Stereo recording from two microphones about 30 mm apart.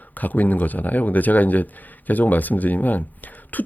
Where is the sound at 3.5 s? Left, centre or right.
Left.